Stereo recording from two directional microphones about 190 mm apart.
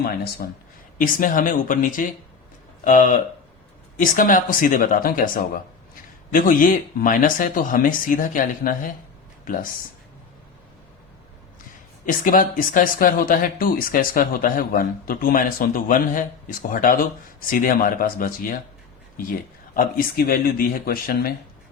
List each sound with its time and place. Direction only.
0.4 s speech: 55° left (ahead or behind)
12.0 s speech: 45° left (ahead or behind)